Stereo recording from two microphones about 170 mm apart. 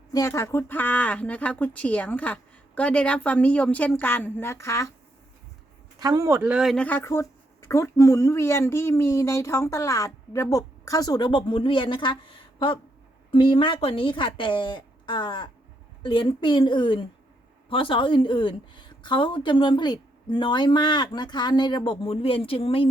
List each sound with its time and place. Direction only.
0.1 s speech: 20° left (ahead or behind)
6.0 s a man's voice: 20° right (ahead or behind)
6.4 s a woman's voice: 5° right (ahead or behind); by 22.9 s 35° left (ahead or behind)